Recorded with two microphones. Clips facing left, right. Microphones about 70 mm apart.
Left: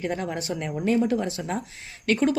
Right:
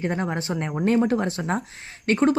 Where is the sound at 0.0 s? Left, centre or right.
Right.